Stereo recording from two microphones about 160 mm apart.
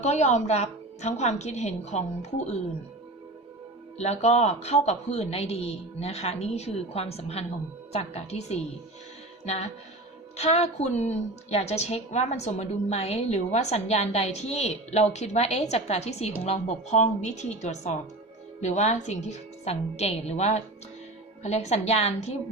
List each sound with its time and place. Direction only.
0.0 s a woman's voice: 45° left (ahead or behind)
3.9 s a man's voice: 45° left (ahead or behind)